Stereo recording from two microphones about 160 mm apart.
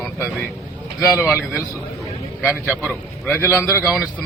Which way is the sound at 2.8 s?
10° left (ahead or behind).